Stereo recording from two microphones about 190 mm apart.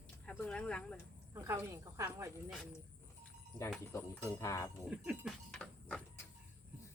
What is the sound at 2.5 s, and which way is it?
Speech, centre (ahead or behind).